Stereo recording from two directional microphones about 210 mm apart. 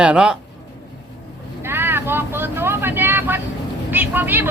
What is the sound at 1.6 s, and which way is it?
Vehicle, 10° right (ahead or behind).